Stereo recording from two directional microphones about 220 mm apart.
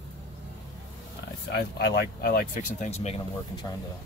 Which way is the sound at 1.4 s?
50° left (ahead or behind).